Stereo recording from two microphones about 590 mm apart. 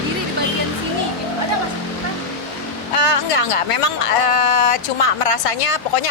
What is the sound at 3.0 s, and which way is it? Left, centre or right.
A woman's voice, left.